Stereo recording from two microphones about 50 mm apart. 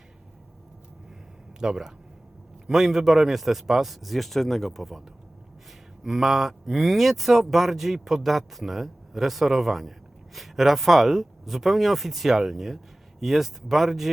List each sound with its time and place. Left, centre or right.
1.5 s speech: centre